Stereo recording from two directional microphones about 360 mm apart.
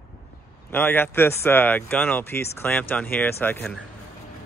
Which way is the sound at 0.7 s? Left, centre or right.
Centre.